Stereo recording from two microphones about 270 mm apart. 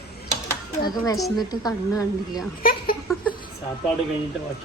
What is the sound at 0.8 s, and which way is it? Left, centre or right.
A woman's voice, centre.